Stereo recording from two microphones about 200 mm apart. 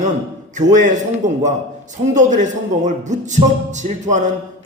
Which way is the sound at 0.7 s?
35° right (ahead or behind).